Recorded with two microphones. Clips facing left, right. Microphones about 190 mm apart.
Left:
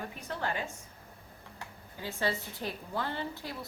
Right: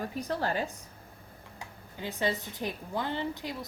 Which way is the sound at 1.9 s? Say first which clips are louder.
Right 2 dB; 20° right (ahead or behind).